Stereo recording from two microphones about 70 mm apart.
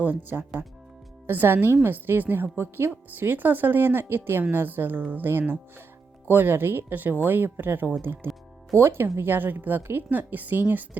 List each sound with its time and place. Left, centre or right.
0.0 s a woman's voice: right